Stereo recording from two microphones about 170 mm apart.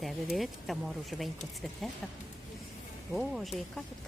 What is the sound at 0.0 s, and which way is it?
Speech, centre (ahead or behind).